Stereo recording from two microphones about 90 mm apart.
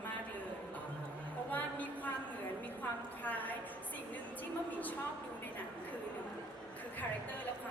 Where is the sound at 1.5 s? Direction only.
20° left (ahead or behind).